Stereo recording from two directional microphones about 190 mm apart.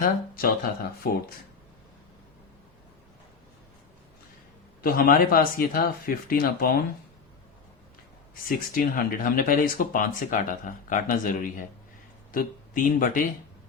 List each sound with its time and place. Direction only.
0.0 s speech: 50° left (ahead or behind)
4.8 s speech: 50° left (ahead or behind)
8.4 s speech: 50° left (ahead or behind)